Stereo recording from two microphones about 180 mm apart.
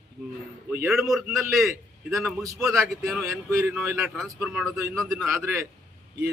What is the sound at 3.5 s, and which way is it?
A man's voice, 15° right (ahead or behind).